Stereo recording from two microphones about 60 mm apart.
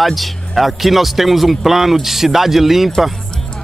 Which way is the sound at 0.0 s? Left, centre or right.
Centre.